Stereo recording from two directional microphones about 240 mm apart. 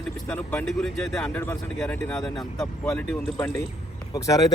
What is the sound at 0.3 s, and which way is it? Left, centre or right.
Speech, centre.